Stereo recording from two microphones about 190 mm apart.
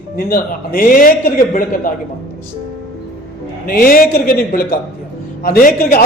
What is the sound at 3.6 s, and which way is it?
A man's voice, 50° left (ahead or behind).